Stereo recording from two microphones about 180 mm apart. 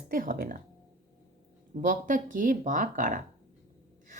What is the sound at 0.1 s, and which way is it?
Speech, 50° right (ahead or behind).